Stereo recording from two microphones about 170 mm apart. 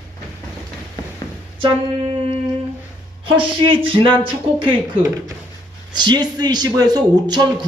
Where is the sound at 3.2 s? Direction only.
30° right (ahead or behind).